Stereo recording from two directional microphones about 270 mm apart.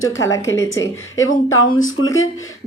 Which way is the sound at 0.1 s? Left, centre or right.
Centre.